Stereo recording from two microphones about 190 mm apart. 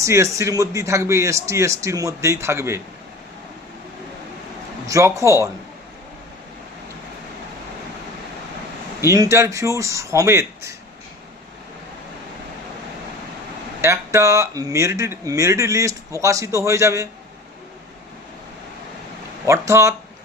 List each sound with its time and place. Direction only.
0.0 s speech: 15° right (ahead or behind)
4.9 s speech: 15° right (ahead or behind)
9.0 s speech: 15° right (ahead or behind)
13.8 s speech: 15° right (ahead or behind)
19.5 s speech: 15° right (ahead or behind)